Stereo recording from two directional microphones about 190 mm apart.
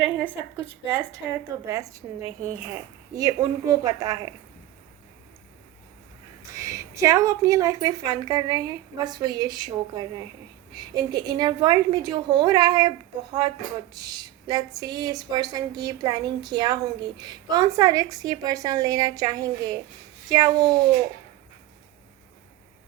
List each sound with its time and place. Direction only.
0.0 s a woman's voice: 10° right (ahead or behind)
6.5 s a woman's voice: 15° right (ahead or behind)